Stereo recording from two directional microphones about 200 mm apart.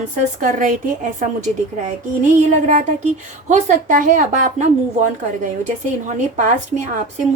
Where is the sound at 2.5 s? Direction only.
35° right (ahead or behind).